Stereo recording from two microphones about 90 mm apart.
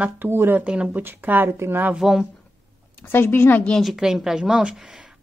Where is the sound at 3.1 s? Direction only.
25° left (ahead or behind).